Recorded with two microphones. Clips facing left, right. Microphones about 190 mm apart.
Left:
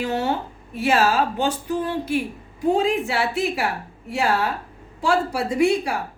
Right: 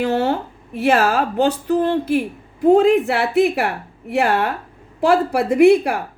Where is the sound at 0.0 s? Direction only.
55° right (ahead or behind).